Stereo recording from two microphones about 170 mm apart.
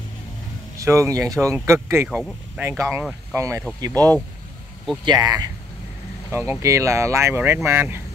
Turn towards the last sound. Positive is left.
turn(degrees=-15)  # may be behind; listen again after turning